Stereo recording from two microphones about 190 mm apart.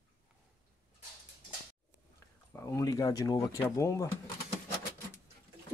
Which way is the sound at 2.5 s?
15° left (ahead or behind).